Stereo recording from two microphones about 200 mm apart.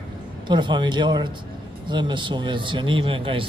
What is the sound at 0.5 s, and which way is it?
Speech, 25° right (ahead or behind).